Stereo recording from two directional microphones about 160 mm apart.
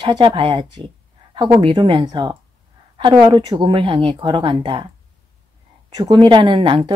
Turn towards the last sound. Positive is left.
turn(degrees=-30)  # may be behind; listen again after turning